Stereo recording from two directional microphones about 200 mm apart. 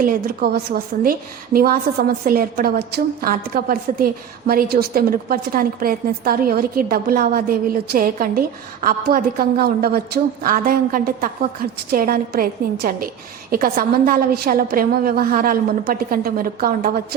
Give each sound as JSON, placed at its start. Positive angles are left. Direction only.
{"t": 0.0, "sound": "a woman's voice", "side_deg": -45}